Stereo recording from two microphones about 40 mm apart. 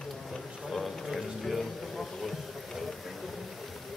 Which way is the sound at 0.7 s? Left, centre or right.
Centre.